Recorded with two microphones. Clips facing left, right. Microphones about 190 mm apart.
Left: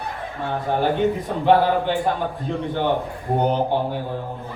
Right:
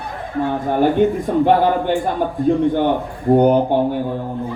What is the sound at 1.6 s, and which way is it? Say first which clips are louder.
Speech: right 4 dB; 50° right (ahead or behind).